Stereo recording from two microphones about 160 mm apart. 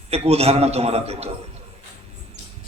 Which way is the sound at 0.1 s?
40° right (ahead or behind).